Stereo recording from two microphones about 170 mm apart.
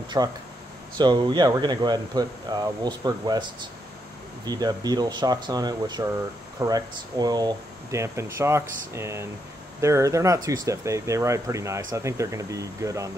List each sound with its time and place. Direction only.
0.2 s speech: 20° right (ahead or behind)
4.5 s speech: 20° right (ahead or behind)